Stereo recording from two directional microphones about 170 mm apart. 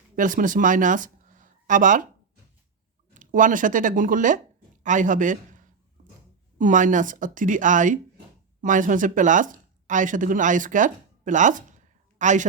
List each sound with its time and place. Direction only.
0.2 s speech: 50° right (ahead or behind)
3.2 s a man's voice: 50° right (ahead or behind)